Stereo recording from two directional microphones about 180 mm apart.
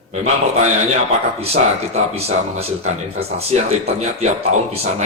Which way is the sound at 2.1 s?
35° right (ahead or behind).